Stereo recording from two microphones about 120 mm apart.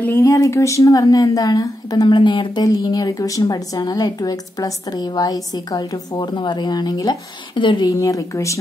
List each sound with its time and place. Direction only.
0.0 s a woman's voice: 20° left (ahead or behind); by 7.9 s 40° left (ahead or behind)
7.9 s speech: 30° left (ahead or behind)